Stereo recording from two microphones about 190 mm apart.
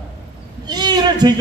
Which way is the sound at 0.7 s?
20° right (ahead or behind).